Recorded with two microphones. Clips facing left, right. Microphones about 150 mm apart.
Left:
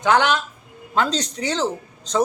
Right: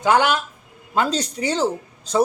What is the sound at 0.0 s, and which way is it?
Speech, 10° right (ahead or behind).